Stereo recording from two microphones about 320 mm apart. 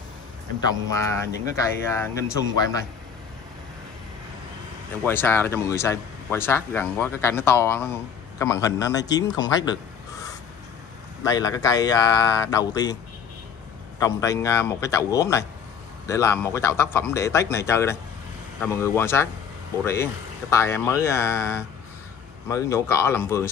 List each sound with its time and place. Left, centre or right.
0.7 s speech: centre
5.0 s speech: centre
11.2 s speech: centre
13.9 s speech: centre